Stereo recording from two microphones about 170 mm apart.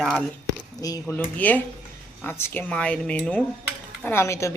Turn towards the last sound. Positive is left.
turn(degrees=15)  # may be behind; listen again after turning